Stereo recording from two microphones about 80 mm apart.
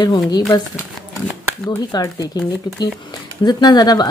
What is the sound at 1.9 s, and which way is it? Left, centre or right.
Speech, left.